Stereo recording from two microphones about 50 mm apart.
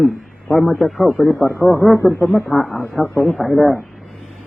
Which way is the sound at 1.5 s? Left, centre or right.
Left.